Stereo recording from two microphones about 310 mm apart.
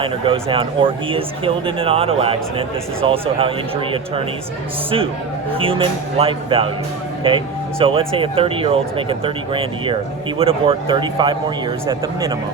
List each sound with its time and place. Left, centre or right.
0.0 s speech: centre
5.5 s speech: centre